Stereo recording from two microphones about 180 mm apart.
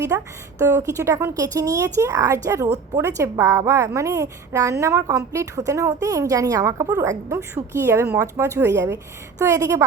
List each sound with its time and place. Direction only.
0.6 s a woman's voice: 15° right (ahead or behind)